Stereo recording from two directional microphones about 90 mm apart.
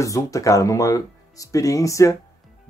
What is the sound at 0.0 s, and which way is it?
Speech, 35° left (ahead or behind).